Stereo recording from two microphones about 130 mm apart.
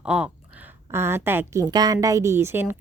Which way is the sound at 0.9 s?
20° right (ahead or behind).